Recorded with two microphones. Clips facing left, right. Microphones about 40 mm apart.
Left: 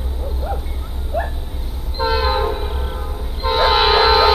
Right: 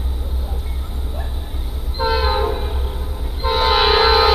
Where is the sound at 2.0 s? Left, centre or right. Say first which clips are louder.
Left 1 dB; centre.